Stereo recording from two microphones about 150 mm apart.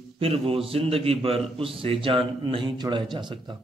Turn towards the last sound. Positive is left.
turn(degrees=-30)  # may be behind; listen again after turning